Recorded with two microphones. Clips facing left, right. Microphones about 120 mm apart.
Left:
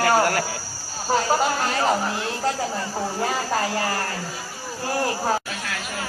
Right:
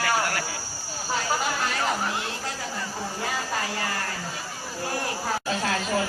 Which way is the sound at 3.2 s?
40° left (ahead or behind).